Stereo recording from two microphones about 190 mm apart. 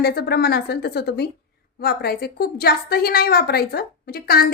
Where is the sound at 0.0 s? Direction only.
55° left (ahead or behind).